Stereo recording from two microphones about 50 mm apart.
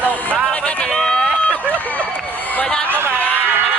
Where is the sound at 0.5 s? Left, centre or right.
Centre.